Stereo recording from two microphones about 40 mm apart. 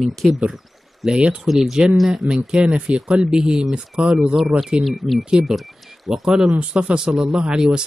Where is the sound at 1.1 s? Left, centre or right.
Right.